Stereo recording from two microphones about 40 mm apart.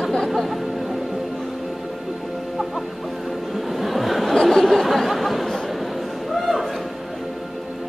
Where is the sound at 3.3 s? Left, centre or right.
Centre.